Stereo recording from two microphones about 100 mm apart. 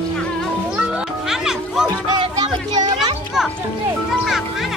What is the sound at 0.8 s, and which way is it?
Children playing, 5° right (ahead or behind).